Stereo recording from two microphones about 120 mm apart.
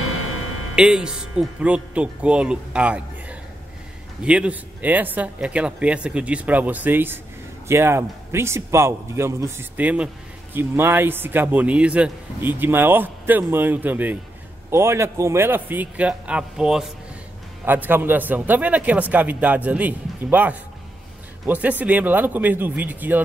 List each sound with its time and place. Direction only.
0.7 s a man's voice: 5° right (ahead or behind)
17.6 s speech: 15° right (ahead or behind)